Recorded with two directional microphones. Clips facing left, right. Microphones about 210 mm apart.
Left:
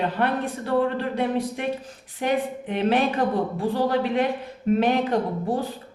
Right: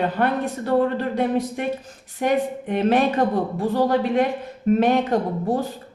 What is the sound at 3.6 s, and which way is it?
Speech, 45° right (ahead or behind).